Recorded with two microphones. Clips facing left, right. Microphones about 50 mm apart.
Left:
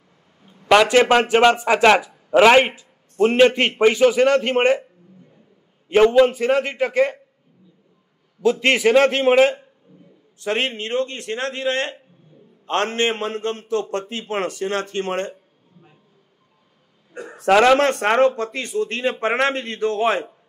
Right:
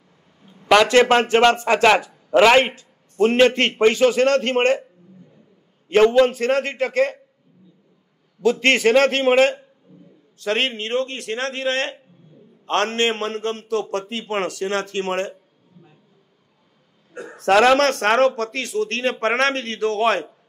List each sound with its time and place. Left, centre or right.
0.4 s a sound: centre
0.9 s a man's voice: centre
5.9 s speech: centre
8.4 s speech: centre
10.4 s speech: centre
10.7 s speech: centre
11.3 s a man's voice: left; by 15.3 s centre
17.1 s speech: centre
17.7 s speech: centre